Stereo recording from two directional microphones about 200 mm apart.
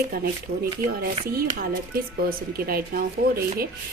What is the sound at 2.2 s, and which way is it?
Speech, 50° right (ahead or behind).